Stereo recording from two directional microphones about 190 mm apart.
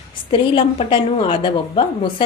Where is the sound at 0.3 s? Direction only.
25° left (ahead or behind).